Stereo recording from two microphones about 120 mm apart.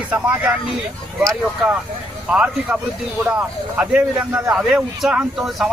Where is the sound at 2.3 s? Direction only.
10° right (ahead or behind).